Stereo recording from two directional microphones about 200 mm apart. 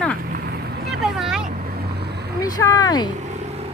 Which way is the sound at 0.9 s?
Centre (ahead or behind).